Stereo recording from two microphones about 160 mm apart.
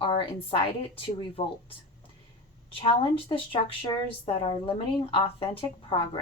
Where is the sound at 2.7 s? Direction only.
35° left (ahead or behind).